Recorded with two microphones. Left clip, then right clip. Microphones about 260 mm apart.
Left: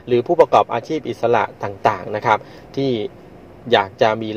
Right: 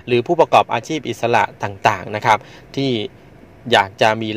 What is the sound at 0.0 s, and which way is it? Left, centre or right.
Speech, right.